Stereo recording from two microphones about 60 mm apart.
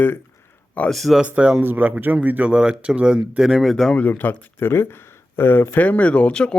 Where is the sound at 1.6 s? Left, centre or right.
Right.